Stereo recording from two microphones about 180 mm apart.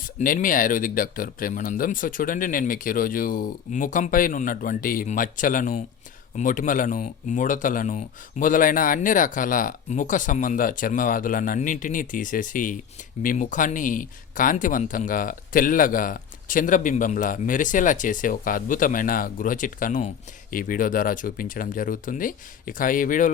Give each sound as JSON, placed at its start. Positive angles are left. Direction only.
{"t": 0.2, "sound": "speech", "side_deg": 50}